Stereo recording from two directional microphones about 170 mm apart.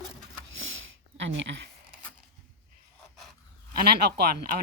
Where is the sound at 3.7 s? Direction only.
65° right (ahead or behind).